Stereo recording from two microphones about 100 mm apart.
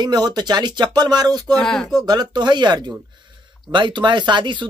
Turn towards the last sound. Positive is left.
turn(degrees=-50)  # may be behind; listen again after turning